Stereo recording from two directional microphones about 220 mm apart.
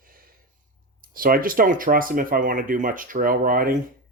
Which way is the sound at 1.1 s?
40° right (ahead or behind).